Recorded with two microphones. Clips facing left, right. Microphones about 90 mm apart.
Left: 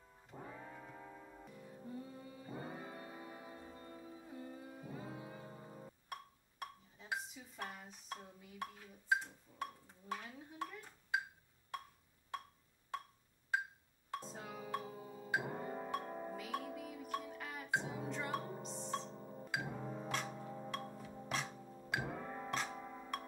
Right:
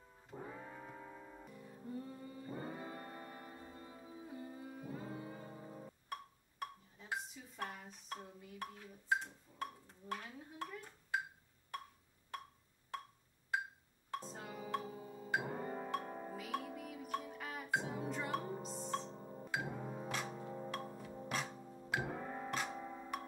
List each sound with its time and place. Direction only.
0.7 s music: 40° right (ahead or behind)
1.4 s music: centre (ahead or behind)
6.6 s dishes: 5° left (ahead or behind)
14.1 s music: centre (ahead or behind)